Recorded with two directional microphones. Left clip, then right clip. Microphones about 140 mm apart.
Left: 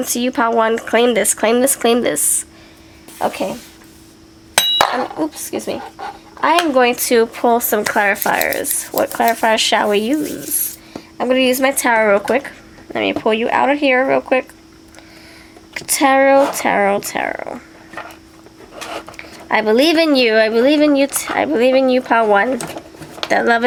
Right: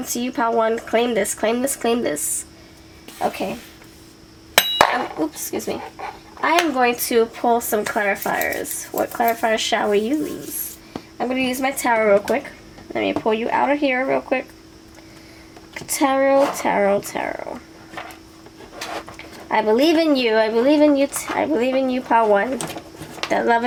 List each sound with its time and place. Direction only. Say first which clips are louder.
0.0 s speech: left 5 dB; 35° left (ahead or behind)
5.2 s speech: left 3 dB; 30° left (ahead or behind)
6.0 s a sound: left 6 dB; 30° left (ahead or behind)
6.7 s speech: left 5 dB; 30° left (ahead or behind)
15.7 s speech: left 6 dB; 40° left (ahead or behind)
19.5 s speech: left 3 dB; 40° left (ahead or behind)